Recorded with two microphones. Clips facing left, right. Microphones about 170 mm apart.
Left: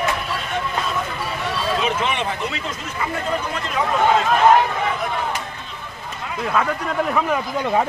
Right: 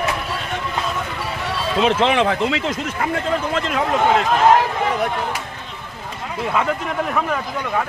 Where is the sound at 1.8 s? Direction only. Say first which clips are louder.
Right 6 dB; 90° right.